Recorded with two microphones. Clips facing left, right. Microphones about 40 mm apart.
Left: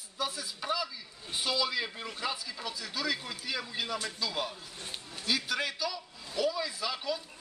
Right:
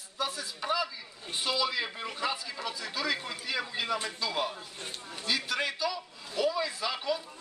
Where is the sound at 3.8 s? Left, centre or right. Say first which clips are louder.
Right 3 dB; right.